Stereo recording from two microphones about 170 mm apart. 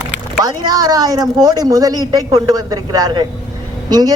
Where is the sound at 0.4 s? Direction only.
20° right (ahead or behind).